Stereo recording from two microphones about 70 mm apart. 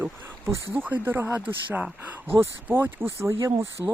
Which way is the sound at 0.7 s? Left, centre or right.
Right.